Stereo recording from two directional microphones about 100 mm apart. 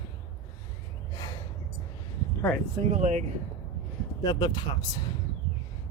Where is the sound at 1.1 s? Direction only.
40° left (ahead or behind).